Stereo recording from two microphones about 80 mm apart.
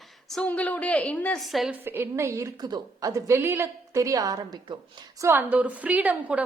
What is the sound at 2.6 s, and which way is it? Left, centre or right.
Speech, right.